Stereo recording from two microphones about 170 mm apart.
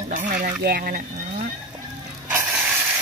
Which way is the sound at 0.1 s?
50° right (ahead or behind).